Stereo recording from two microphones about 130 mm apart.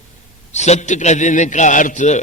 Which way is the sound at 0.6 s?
60° left (ahead or behind).